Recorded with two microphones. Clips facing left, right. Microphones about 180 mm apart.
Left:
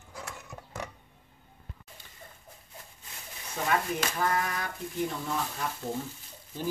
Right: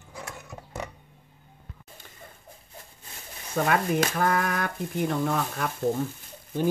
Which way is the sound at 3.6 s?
60° right (ahead or behind).